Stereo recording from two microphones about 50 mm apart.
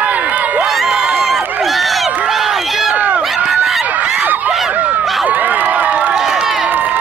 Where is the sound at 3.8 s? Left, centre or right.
Right.